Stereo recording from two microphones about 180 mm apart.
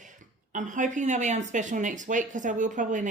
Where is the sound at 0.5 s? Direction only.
45° right (ahead or behind).